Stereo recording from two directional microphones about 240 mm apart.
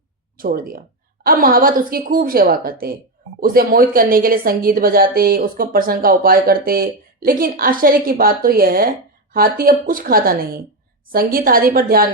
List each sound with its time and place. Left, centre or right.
0.3 s speech: right